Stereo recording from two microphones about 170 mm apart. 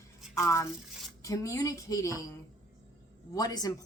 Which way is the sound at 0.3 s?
15° left (ahead or behind).